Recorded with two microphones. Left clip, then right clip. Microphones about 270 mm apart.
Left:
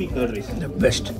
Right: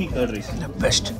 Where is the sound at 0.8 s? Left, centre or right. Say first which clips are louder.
Left 2 dB; centre.